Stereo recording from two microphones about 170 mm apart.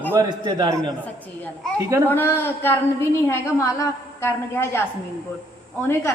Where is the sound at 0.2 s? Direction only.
25° right (ahead or behind).